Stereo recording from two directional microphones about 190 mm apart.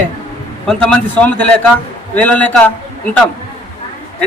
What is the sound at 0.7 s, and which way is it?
Speech, 5° left (ahead or behind).